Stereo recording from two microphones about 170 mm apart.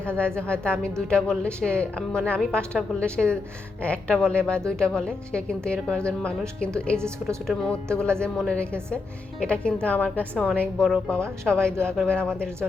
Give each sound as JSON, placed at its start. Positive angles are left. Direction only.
{"t": 0.2, "sound": "speech", "side_deg": 5}
{"t": 6.9, "sound": "a woman's voice", "side_deg": -15}
{"t": 7.4, "sound": "speech", "side_deg": 0}